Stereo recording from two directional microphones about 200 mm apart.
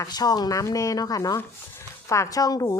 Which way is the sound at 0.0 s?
20° left (ahead or behind).